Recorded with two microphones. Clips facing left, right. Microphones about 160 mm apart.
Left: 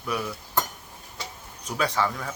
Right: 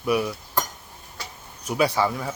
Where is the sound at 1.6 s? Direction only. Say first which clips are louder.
Right 4 dB; 10° right (ahead or behind).